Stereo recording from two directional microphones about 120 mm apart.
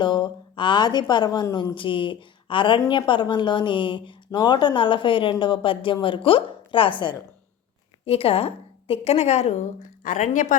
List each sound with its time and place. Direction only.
0.0 s a woman's voice: 40° left (ahead or behind)
1.7 s a woman's voice: 45° left (ahead or behind)
8.0 s a woman's voice: 55° left (ahead or behind)
10.0 s a woman's voice: 90° left